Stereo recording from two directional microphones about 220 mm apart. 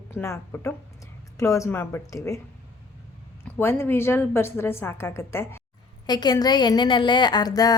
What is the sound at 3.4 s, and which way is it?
A woman's voice, 10° left (ahead or behind).